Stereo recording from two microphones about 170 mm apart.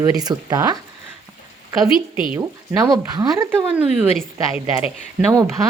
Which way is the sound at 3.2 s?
20° right (ahead or behind).